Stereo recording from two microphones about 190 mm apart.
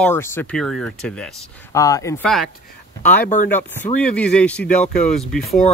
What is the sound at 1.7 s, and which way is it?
Speech, 15° left (ahead or behind).